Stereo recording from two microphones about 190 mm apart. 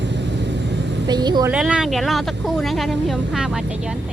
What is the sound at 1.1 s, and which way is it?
Speech, 20° right (ahead or behind).